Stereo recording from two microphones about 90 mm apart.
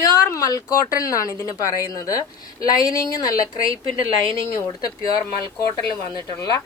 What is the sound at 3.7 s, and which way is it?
Speech, 90° right.